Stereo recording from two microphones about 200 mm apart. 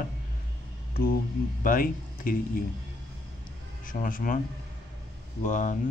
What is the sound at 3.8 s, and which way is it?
Speech, 45° left (ahead or behind).